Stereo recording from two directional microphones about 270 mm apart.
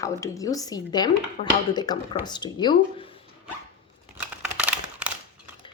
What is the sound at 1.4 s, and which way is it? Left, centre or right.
Speech, left.